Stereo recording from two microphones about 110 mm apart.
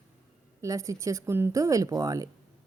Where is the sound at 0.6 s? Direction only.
30° right (ahead or behind).